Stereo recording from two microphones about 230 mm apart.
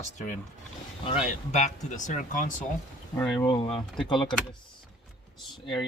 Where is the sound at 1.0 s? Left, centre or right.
Left.